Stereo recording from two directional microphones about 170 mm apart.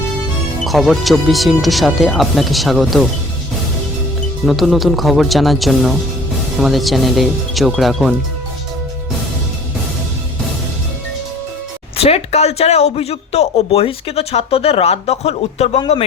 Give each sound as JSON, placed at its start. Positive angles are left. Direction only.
{"t": 0.6, "sound": "speech", "side_deg": 0}
{"t": 4.4, "sound": "speech", "side_deg": 0}
{"t": 11.9, "sound": "a man's voice", "side_deg": 35}